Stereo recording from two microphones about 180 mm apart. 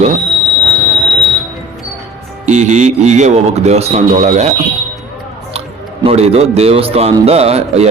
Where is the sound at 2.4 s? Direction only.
40° right (ahead or behind).